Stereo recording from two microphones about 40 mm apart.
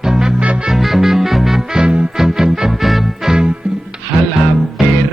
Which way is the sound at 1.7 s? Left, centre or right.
Right.